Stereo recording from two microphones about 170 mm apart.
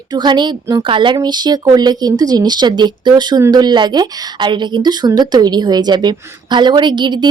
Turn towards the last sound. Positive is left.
turn(degrees=-25)  # may be behind; listen again after turning